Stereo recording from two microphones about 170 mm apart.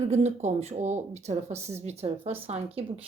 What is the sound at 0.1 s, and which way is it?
Speech, 40° right (ahead or behind).